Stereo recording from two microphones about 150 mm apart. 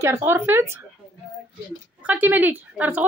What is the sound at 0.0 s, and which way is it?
Speech, 15° right (ahead or behind).